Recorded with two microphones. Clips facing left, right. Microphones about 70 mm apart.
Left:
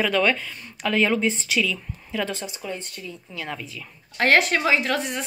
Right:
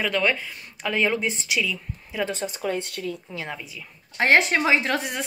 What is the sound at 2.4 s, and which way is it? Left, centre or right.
Speech, right.